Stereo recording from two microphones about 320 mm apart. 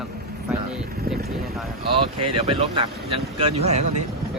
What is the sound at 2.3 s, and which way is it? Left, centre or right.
Speech, centre.